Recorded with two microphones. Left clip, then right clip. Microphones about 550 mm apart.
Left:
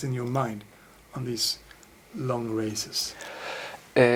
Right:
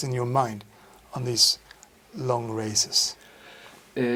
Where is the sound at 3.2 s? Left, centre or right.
Left.